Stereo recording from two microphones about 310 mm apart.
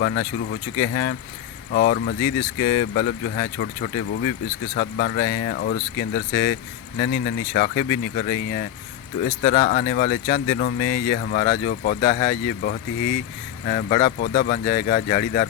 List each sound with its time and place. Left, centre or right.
0.0 s speech: left